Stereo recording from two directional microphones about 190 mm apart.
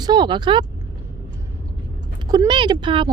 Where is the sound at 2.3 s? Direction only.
25° right (ahead or behind).